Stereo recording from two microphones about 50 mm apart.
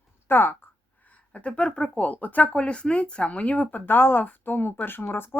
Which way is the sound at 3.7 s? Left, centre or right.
Left.